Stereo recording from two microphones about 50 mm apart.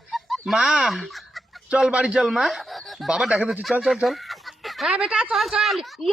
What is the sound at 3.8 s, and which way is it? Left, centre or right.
Chicken, centre.